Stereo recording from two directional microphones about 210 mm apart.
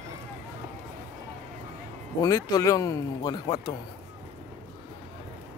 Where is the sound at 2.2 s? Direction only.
15° left (ahead or behind).